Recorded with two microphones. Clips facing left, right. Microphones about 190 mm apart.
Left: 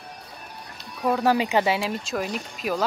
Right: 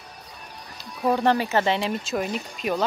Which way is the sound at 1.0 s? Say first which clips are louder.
Right 1 dB; centre (ahead or behind).